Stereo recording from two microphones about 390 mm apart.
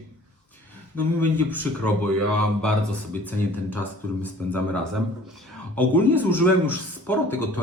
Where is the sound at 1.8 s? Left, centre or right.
Centre.